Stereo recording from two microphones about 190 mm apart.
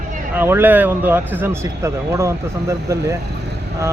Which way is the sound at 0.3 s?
10° right (ahead or behind).